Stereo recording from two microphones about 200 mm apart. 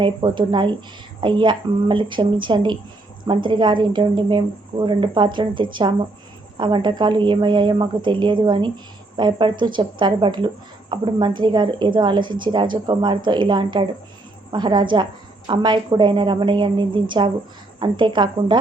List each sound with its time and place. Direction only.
0.0 s speech: 25° right (ahead or behind)